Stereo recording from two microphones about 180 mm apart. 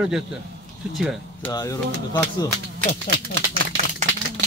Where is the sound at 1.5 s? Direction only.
20° left (ahead or behind).